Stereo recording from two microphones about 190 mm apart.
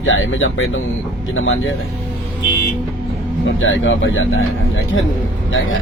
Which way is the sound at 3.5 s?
85° left.